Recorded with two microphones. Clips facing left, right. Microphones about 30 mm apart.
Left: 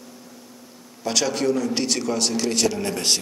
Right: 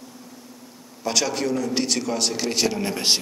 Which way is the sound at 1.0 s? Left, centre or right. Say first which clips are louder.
Left 2 dB; centre.